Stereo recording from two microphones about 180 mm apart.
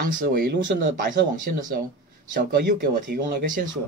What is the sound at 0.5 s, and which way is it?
Speech, 80° right.